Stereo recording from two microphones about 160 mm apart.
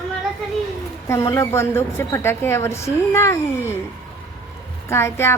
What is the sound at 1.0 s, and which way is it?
A woman's voice, 15° left (ahead or behind).